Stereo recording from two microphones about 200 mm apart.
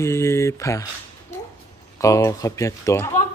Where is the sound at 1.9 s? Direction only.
15° left (ahead or behind).